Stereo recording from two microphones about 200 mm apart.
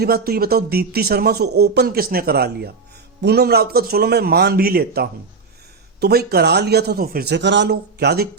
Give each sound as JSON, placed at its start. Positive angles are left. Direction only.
{"t": 0.0, "sound": "a man's voice", "side_deg": -50}